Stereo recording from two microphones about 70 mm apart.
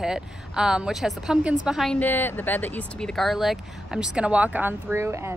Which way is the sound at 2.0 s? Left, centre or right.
Left.